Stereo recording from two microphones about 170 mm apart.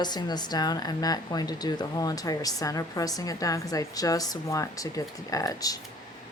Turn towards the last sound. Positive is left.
turn(degrees=20)  # may be behind; listen again after turning